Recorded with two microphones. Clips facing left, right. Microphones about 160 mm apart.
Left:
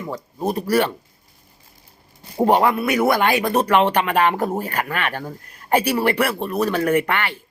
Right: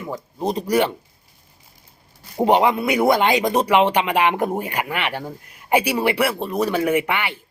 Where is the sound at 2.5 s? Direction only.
15° right (ahead or behind).